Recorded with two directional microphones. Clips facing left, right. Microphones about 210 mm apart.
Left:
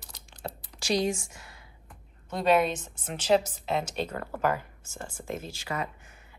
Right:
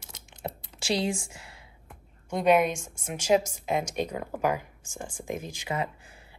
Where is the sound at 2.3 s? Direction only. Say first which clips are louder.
Right 2 dB; 15° right (ahead or behind).